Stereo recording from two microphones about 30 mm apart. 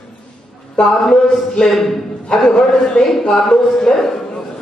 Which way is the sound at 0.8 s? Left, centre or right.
Centre.